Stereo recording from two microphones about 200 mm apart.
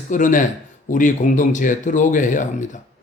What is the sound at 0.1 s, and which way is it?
A man's voice, 40° left (ahead or behind).